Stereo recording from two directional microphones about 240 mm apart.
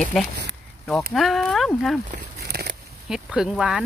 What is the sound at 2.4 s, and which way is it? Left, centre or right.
Biting, right.